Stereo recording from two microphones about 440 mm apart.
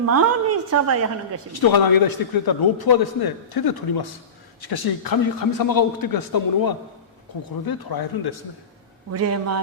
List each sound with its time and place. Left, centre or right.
0.0 s a woman's voice: right
1.5 s a man's voice: left
9.1 s a woman's voice: right